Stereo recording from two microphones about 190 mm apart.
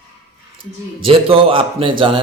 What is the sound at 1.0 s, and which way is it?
Speech, 30° right (ahead or behind).